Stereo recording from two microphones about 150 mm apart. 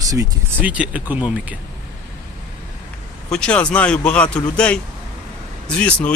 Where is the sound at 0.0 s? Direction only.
25° right (ahead or behind).